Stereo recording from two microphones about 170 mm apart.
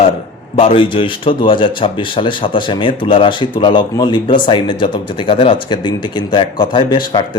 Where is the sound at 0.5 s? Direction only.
30° left (ahead or behind).